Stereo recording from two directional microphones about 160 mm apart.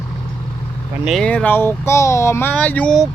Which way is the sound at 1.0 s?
5° left (ahead or behind).